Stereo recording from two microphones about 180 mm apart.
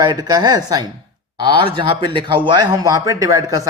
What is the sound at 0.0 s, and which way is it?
Speech, 25° right (ahead or behind).